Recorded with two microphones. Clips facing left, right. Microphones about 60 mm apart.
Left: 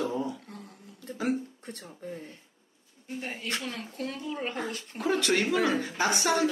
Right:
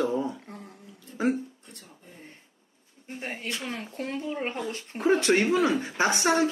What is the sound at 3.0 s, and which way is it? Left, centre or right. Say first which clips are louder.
Speech: right 1 dB; right.